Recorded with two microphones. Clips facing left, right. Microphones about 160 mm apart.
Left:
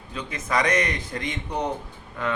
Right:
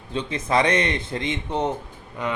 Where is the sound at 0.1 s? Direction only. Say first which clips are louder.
Right 4 dB; 30° right (ahead or behind).